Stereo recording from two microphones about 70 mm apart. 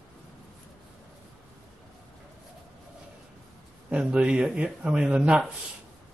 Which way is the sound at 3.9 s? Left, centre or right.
Centre.